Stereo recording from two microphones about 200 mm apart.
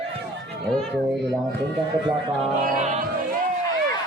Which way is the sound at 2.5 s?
40° right (ahead or behind).